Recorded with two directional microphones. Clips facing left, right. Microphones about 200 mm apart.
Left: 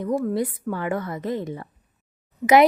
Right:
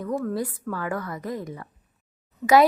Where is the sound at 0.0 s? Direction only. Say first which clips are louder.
Left 4 dB; 15° left (ahead or behind).